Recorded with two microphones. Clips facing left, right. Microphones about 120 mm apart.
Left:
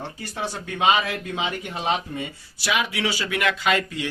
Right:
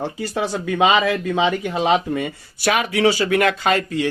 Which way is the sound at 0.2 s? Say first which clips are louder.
Right 6 dB; 90° right.